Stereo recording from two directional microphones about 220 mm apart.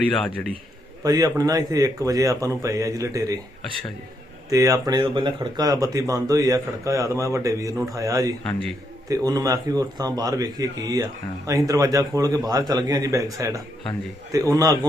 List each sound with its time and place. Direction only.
0.1 s a man's voice: 5° left (ahead or behind)
1.0 s a man's voice: 15° right (ahead or behind)
4.4 s a man's voice: 15° right (ahead or behind)